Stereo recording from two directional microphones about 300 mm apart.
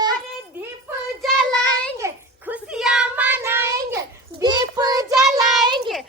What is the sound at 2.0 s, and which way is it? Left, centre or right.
Child singing, centre.